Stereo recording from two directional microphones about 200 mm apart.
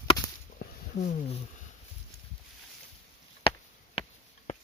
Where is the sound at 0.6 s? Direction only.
50° left (ahead or behind).